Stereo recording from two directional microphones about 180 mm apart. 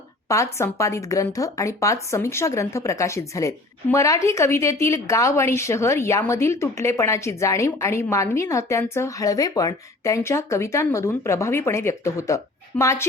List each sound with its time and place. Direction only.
0.3 s speech: 15° left (ahead or behind)